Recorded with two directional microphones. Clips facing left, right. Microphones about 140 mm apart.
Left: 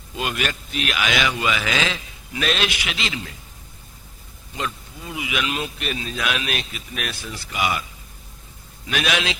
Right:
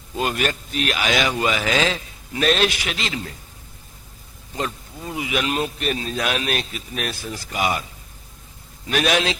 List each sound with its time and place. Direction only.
0.2 s a man's voice: 40° right (ahead or behind)
4.5 s a man's voice: 40° right (ahead or behind)
8.9 s a man's voice: 40° right (ahead or behind)